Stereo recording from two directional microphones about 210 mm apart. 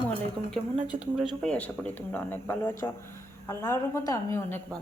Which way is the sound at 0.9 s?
Centre (ahead or behind).